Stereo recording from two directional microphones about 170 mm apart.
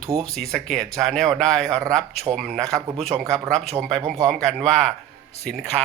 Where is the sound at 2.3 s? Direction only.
20° right (ahead or behind).